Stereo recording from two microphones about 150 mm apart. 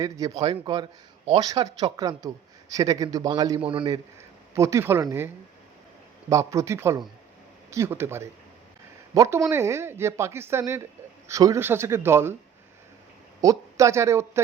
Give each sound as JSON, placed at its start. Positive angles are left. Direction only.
{"t": 0.0, "sound": "a man's voice", "side_deg": -20}
{"t": 0.4, "sound": "a man's voice", "side_deg": -35}
{"t": 4.5, "sound": "a man's voice", "side_deg": -20}
{"t": 13.4, "sound": "speech", "side_deg": -20}